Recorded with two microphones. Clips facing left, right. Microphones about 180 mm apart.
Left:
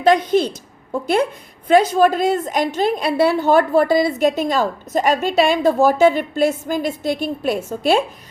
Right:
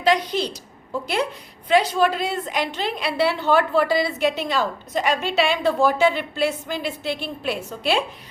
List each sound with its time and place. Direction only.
0.0 s a woman's voice: 50° left (ahead or behind)